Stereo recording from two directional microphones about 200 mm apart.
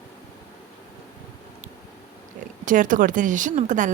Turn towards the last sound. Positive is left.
turn(degrees=-40)  # may be behind; listen again after turning